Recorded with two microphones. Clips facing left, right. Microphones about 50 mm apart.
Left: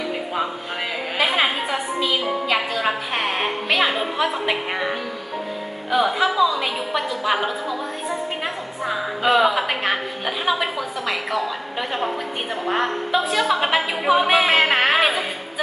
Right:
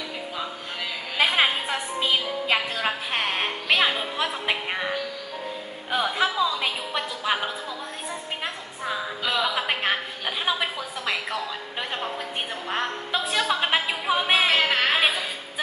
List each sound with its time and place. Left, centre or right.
1.2 s a sound: centre
2.8 s music: centre
5.9 s a woman's voice: centre
9.2 s speech: left
9.6 s a woman's voice: centre
12.6 s a woman's voice: centre
14.5 s speech: left